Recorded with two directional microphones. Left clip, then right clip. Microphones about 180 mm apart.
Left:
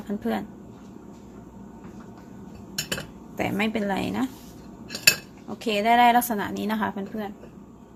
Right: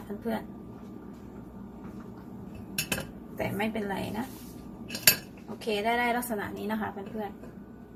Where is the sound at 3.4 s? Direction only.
65° left (ahead or behind).